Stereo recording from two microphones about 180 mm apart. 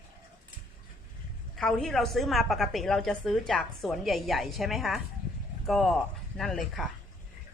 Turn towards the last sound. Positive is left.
turn(degrees=0)  # may be behind; listen again after turning